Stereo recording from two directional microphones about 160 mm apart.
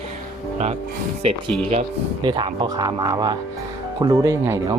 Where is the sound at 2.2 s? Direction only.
30° right (ahead or behind).